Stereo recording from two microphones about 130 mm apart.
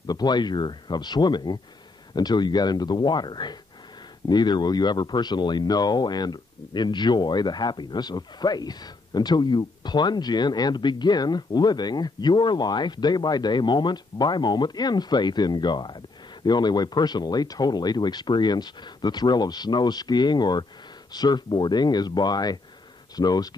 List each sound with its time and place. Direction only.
0.0 s speech: 30° left (ahead or behind)